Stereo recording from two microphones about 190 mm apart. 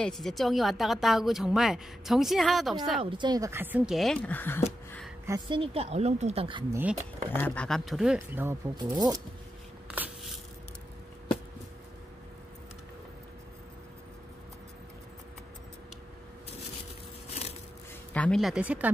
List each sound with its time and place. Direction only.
0.0 s a woman's voice: centre (ahead or behind)
3.0 s a woman's voice: 25° right (ahead or behind); by 4.6 s 10° left (ahead or behind)
5.2 s a woman's voice: 15° right (ahead or behind)
5.6 s speech: 30° right (ahead or behind)
6.7 s a woman's voice: 10° right (ahead or behind)
7.3 s a woman's voice: 10° left (ahead or behind)
8.3 s speech: 10° right (ahead or behind)
9.8 s a sound: 5° right (ahead or behind)
17.3 s a sound: 35° left (ahead or behind)
18.1 s speech: 5° left (ahead or behind)